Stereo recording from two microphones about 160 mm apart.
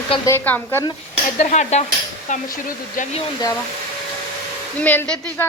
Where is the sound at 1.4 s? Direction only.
45° left (ahead or behind).